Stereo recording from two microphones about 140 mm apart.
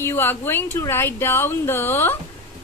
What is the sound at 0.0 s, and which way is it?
A woman's voice, 15° left (ahead or behind).